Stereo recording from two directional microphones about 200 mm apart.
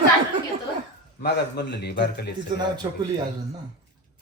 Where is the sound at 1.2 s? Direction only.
55° left (ahead or behind).